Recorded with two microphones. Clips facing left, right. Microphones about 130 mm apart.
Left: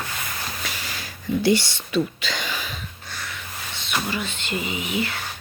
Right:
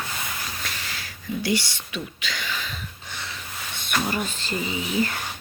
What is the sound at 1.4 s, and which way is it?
Speech, 25° left (ahead or behind).